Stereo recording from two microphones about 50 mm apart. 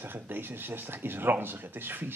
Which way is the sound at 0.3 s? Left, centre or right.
Right.